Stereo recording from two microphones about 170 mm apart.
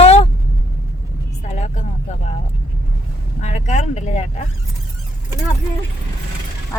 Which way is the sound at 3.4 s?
45° left (ahead or behind).